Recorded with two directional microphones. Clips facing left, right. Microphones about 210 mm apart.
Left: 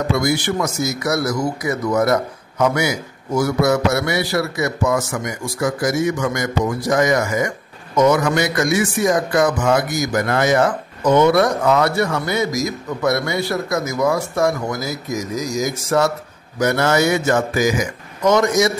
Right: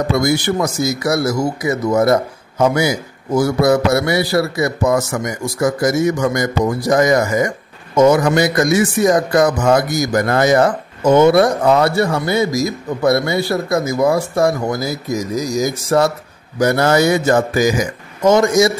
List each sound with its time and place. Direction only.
0.2 s a man's voice: 40° right (ahead or behind)